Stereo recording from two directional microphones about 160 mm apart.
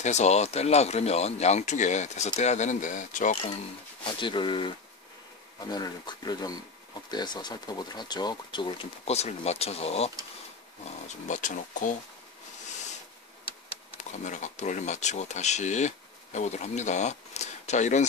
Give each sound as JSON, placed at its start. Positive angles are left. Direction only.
{"t": 0.0, "sound": "speech", "side_deg": 45}
{"t": 4.2, "sound": "speech", "side_deg": 30}
{"t": 13.9, "sound": "speech", "side_deg": 50}